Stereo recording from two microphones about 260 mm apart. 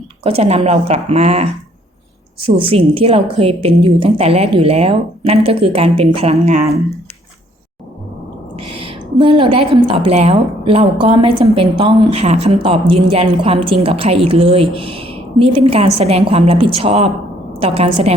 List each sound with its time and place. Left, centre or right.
0.2 s a woman's voice: right
8.5 s a woman's voice: right